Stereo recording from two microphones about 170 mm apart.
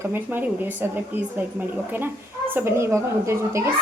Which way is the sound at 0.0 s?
10° right (ahead or behind).